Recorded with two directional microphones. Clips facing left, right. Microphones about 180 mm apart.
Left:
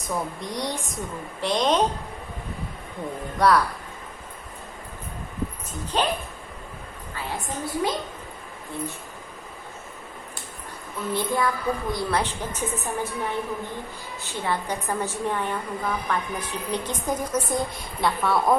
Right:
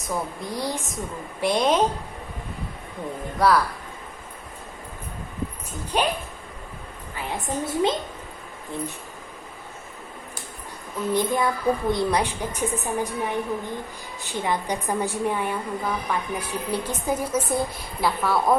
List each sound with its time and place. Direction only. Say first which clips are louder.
0.0 s a woman's voice: even; centre (ahead or behind)
3.3 s speech: even; centre (ahead or behind)
5.9 s a woman's voice: right 1 dB; 10° right (ahead or behind)
7.4 s a woman's voice: right 4 dB; 25° right (ahead or behind)
11.1 s a woman's voice: right 2 dB; 20° right (ahead or behind)
12.2 s a woman's voice: right 2 dB; 10° right (ahead or behind)